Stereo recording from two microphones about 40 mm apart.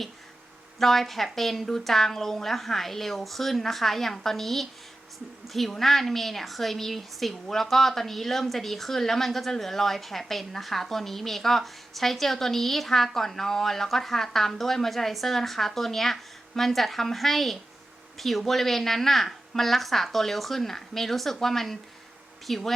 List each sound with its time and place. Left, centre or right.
0.8 s a woman's voice: centre